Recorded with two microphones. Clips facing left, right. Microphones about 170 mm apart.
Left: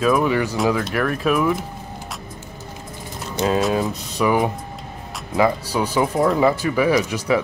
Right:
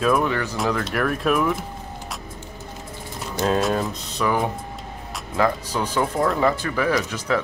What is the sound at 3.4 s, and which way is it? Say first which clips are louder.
Speech: left 2 dB; 5° left (ahead or behind).